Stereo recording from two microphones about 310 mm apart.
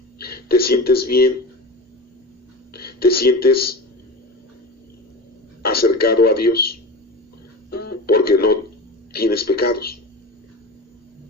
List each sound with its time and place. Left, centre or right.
0.2 s speech: left
2.7 s speech: left
5.6 s a man's voice: left
7.7 s radio: left
9.1 s a man's voice: left